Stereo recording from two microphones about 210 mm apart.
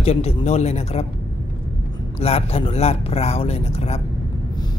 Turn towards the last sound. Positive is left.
turn(degrees=30)  # may be behind; listen again after turning